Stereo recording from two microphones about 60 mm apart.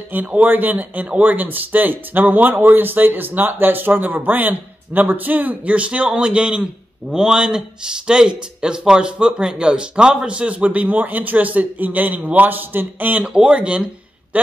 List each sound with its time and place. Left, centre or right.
0.1 s a man's voice: right
13.2 s a man's voice: centre